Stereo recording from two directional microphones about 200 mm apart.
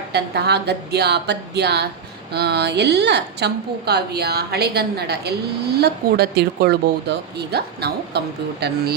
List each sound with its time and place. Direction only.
0.1 s a woman's voice: 55° right (ahead or behind)